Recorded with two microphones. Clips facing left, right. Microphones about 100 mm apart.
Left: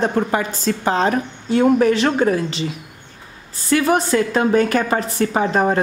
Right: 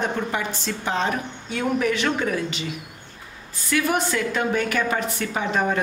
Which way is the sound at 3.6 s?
35° left (ahead or behind).